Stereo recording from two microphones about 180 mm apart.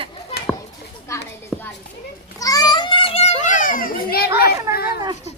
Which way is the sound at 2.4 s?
20° left (ahead or behind).